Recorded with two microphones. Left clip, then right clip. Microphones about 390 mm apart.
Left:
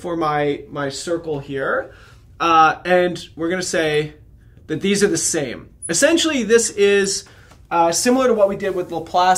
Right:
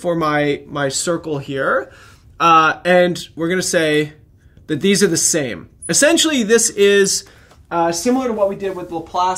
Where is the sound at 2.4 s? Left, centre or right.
Right.